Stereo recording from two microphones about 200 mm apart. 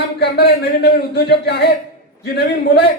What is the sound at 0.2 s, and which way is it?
A man's voice, 55° left (ahead or behind).